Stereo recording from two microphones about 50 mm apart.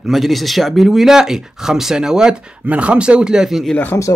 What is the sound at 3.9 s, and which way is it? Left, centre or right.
Speech, left.